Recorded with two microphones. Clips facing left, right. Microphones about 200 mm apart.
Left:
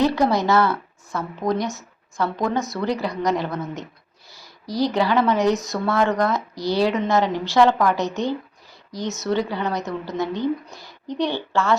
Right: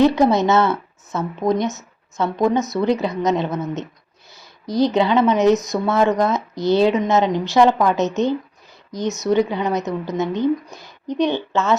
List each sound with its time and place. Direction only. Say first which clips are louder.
0.0 s speech: right 4 dB; 20° right (ahead or behind)